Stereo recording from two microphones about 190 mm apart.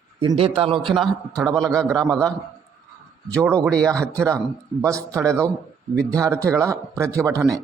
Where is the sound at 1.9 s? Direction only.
20° right (ahead or behind).